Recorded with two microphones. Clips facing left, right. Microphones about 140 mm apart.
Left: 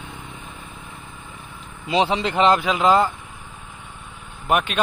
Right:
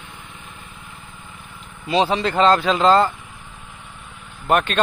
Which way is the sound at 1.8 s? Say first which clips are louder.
Right 1 dB; 20° left (ahead or behind).